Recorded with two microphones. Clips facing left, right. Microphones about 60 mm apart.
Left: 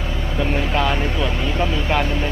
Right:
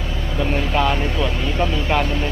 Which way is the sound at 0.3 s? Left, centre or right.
Centre.